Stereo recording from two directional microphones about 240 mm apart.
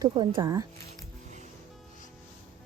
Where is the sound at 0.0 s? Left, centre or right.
Centre.